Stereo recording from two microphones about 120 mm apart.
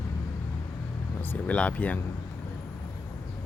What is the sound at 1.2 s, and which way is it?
Speech, 15° left (ahead or behind).